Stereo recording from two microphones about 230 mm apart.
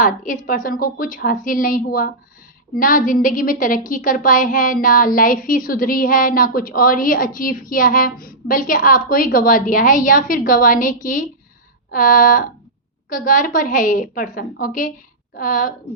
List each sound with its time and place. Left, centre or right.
0.4 s a woman's voice: left